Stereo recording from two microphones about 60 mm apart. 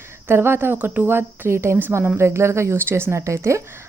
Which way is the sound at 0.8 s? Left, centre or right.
Right.